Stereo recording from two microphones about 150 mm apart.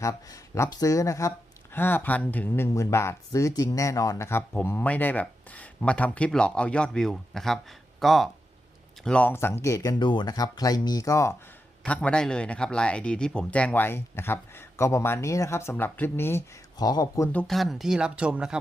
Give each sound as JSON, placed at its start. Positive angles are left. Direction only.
{"t": 0.0, "sound": "speech", "side_deg": 20}
{"t": 11.8, "sound": "speech", "side_deg": 10}
{"t": 17.3, "sound": "speech", "side_deg": 0}